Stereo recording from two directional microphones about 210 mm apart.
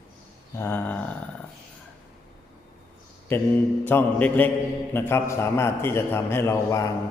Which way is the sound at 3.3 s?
10° left (ahead or behind).